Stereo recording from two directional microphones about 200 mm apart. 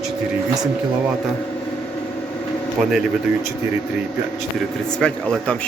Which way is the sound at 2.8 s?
Centre (ahead or behind).